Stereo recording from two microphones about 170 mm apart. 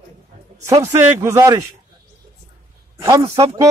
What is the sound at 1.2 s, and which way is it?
Speech, 20° right (ahead or behind).